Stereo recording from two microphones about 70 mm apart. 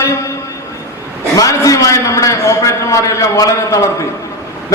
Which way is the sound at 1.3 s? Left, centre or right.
Left.